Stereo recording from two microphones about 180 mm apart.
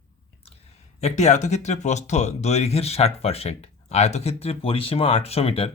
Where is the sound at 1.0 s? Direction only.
40° left (ahead or behind).